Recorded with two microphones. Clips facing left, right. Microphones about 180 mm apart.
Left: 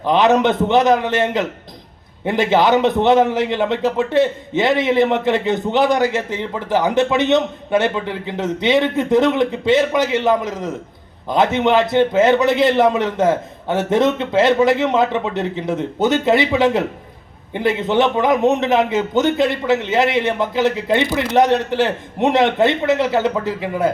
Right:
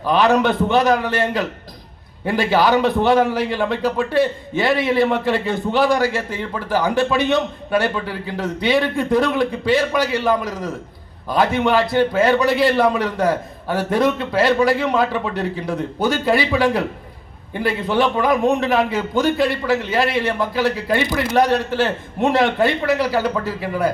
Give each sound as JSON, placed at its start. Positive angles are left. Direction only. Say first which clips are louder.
{"t": 0.0, "sound": "a man's voice", "louder": "left 2 dB", "side_deg": 20}